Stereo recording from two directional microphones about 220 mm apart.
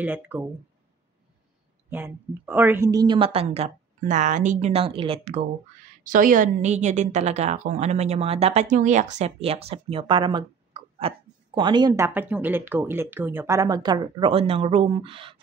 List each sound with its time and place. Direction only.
0.0 s speech: 10° right (ahead or behind)
1.9 s a woman's voice: 10° right (ahead or behind)